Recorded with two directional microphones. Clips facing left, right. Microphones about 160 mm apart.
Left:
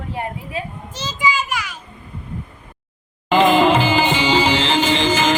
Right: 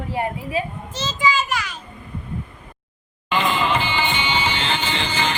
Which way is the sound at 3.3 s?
90° left.